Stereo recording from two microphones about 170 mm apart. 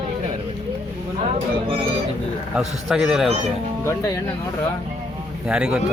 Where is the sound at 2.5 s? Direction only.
5° right (ahead or behind).